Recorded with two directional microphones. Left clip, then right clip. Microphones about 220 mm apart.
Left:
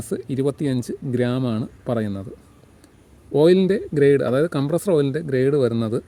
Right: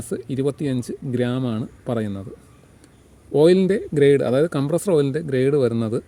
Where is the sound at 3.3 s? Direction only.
5° left (ahead or behind).